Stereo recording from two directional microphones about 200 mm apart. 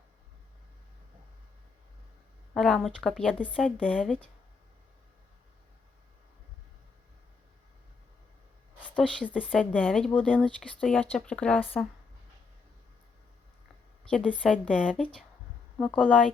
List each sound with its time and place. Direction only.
2.6 s speech: centre (ahead or behind)
8.8 s speech: 5° left (ahead or behind)
14.1 s speech: 5° left (ahead or behind)